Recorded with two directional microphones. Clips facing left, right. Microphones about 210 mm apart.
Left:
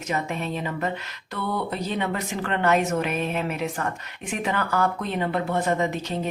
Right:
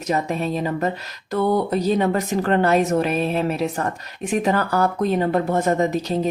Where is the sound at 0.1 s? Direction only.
35° right (ahead or behind).